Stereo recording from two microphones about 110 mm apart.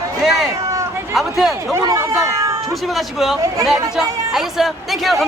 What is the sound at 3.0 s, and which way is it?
Speech, centre (ahead or behind).